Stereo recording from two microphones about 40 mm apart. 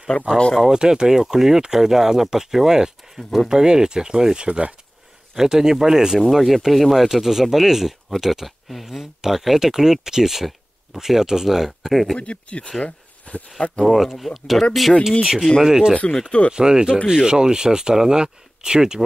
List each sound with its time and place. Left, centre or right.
0.1 s speech: left
0.7 s speech: centre
5.3 s speech: centre
6.3 s speech: centre
12.2 s speech: left
12.8 s a sound: left
13.8 s speech: centre
15.6 s speech: centre
16.1 s speech: left
16.5 s speech: centre